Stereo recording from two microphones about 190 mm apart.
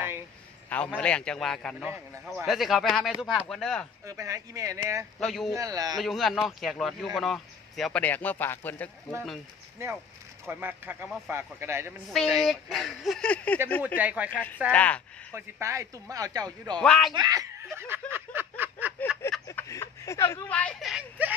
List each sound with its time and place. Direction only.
0.7 s a man's voice: 5° left (ahead or behind)
4.0 s speech: 15° right (ahead or behind)
5.2 s a man's voice: centre (ahead or behind)
5.5 s speech: 20° right (ahead or behind)
5.9 s a man's voice: centre (ahead or behind)
10.4 s speech: 10° right (ahead or behind)
12.4 s a man's voice: centre (ahead or behind)
13.9 s speech: 10° right (ahead or behind)
14.3 s speech: 10° left (ahead or behind)
15.3 s speech: 15° right (ahead or behind)
16.8 s a man's voice: centre (ahead or behind)
17.1 s speech: 20° right (ahead or behind)
17.7 s a sound: 10° right (ahead or behind)
19.4 s speech: 15° left (ahead or behind)